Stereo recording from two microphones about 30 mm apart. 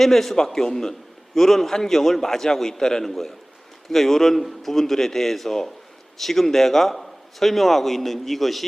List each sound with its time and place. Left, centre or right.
0.0 s a man's voice: centre
3.0 s a man's voice: centre